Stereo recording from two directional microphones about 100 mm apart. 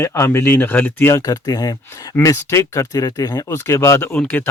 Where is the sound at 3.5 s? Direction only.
25° left (ahead or behind).